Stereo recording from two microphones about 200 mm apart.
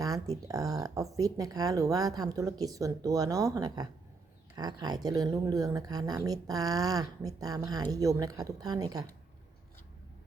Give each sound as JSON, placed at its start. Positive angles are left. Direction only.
{"t": 0.0, "sound": "speech", "side_deg": -15}